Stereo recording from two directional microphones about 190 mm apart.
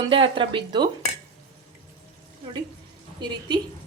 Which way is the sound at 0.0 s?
25° right (ahead or behind).